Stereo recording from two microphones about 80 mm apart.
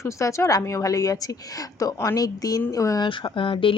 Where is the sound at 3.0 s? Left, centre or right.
Left.